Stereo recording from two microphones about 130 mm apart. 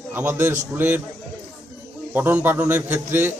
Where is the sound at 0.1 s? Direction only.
15° right (ahead or behind).